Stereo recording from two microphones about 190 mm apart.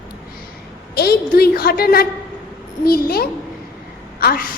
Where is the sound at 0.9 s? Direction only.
55° left (ahead or behind).